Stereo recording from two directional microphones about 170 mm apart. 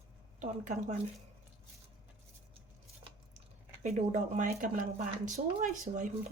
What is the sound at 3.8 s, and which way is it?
Speech, 45° right (ahead or behind).